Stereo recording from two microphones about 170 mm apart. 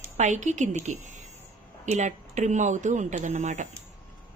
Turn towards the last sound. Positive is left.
turn(degrees=-45)  # may be behind; listen again after turning